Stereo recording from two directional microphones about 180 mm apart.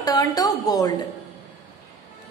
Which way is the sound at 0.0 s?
20° left (ahead or behind).